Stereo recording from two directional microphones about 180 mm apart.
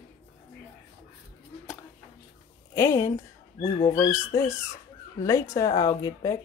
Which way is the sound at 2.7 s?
15° left (ahead or behind).